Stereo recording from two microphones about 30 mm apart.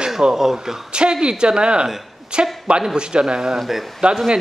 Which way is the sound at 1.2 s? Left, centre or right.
Right.